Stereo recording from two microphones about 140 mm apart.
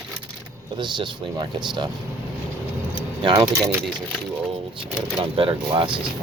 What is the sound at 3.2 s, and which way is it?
Speech, 40° right (ahead or behind).